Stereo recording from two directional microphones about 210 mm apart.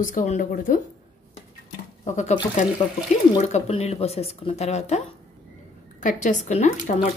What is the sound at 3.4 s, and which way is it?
Speech, 30° left (ahead or behind).